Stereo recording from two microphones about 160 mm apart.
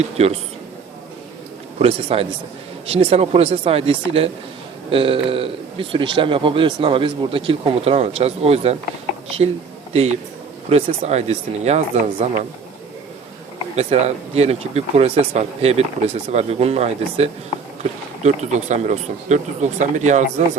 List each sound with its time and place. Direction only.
0.2 s a man's voice: 40° right (ahead or behind)
1.8 s a man's voice: 35° right (ahead or behind)
9.9 s a man's voice: 40° right (ahead or behind)
13.7 s a man's voice: 40° right (ahead or behind)